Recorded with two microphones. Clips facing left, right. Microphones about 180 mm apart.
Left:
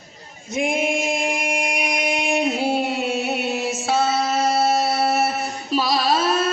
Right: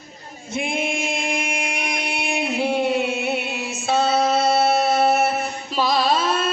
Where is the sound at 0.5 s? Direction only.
40° left (ahead or behind).